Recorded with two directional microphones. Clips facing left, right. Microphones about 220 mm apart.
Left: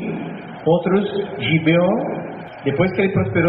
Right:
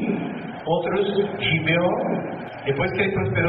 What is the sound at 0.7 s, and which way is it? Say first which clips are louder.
A man's voice: left 5 dB; 50° left (ahead or behind).